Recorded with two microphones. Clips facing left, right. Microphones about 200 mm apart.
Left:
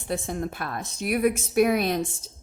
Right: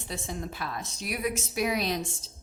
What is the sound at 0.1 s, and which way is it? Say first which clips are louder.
A woman's voice: left 7 dB; 55° left (ahead or behind).